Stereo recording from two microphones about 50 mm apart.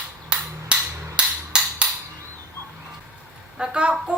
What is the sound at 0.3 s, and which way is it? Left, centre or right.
Hammer, right.